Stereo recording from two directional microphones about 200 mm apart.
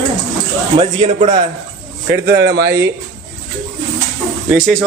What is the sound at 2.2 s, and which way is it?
Speech, 50° right (ahead or behind).